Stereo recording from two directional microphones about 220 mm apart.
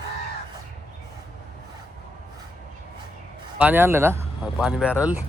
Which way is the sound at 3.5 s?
10° right (ahead or behind).